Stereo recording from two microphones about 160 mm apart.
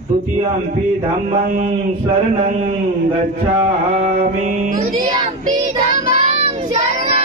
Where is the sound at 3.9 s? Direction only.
55° right (ahead or behind).